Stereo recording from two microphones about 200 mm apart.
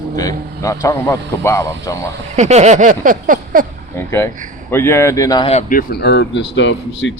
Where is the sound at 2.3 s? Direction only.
35° right (ahead or behind).